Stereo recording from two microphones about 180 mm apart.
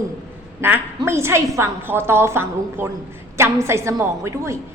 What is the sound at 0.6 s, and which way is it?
A woman's voice, 15° right (ahead or behind).